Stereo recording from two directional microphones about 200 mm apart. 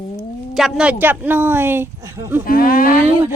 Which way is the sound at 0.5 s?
Centre (ahead or behind).